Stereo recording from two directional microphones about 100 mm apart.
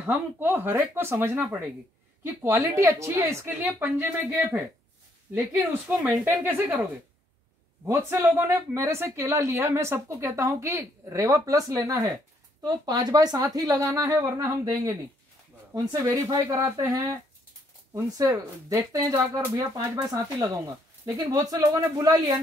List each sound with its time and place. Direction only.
0.1 s speech: 20° right (ahead or behind)
7.8 s speech: 25° right (ahead or behind)
12.6 s speech: 40° right (ahead or behind)